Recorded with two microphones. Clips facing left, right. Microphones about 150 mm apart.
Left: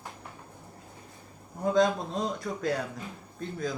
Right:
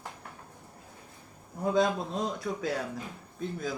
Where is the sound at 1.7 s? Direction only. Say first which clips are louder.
Left 2 dB; centre (ahead or behind).